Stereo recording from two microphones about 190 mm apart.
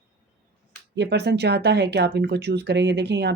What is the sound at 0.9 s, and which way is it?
Speech, 60° right (ahead or behind).